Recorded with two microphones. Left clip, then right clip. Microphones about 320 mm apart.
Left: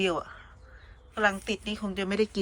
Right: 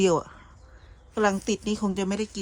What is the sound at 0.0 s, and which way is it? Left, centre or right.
Speech, centre.